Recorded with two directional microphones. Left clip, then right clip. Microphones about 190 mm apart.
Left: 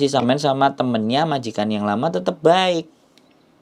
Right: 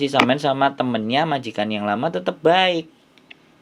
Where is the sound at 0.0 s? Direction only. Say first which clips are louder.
Even; 25° left (ahead or behind).